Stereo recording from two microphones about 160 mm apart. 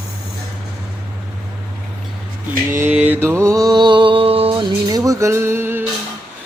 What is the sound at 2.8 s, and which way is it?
Mantra, 10° right (ahead or behind).